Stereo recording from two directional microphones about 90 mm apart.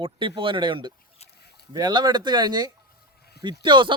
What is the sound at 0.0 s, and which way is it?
A man's voice, 65° right (ahead or behind).